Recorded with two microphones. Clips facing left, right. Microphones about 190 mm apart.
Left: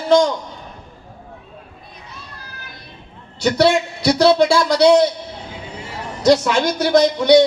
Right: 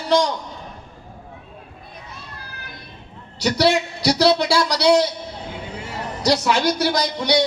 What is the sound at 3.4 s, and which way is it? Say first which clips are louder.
Speech: left 3 dB; 55° left (ahead or behind).